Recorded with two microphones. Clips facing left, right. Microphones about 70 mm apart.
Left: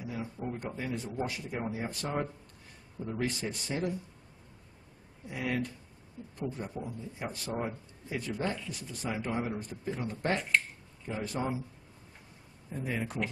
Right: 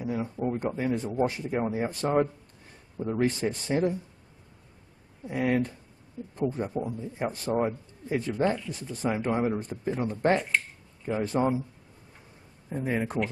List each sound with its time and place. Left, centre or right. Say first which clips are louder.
0.0 s a man's voice: right 8 dB; right
5.2 s a man's voice: right 7 dB; right
12.6 s a man's voice: right 6 dB; right